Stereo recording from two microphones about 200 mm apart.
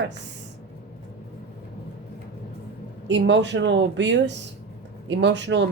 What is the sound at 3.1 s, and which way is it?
A woman's voice, 65° right (ahead or behind).